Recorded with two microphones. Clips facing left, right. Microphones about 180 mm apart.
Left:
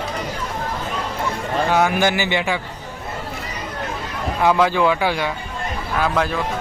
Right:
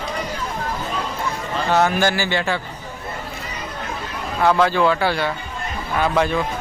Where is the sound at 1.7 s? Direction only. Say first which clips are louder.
Right 1 dB; 10° left (ahead or behind).